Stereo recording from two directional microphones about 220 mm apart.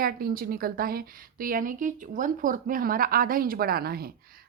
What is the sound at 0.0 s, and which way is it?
A woman's voice, 40° right (ahead or behind).